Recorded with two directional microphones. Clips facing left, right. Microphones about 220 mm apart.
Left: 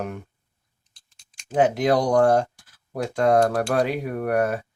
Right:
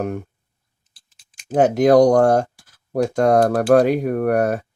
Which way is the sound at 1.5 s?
45° right (ahead or behind).